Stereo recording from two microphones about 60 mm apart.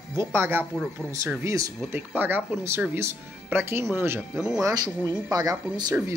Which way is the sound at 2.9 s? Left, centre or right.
Right.